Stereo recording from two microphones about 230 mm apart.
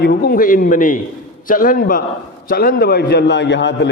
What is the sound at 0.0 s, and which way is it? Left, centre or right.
A man's voice, left.